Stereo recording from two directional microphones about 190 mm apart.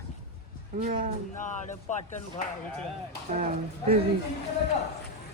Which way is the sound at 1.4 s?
40° left (ahead or behind).